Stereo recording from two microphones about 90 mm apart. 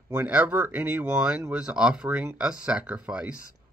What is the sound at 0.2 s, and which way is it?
Speech, 20° right (ahead or behind).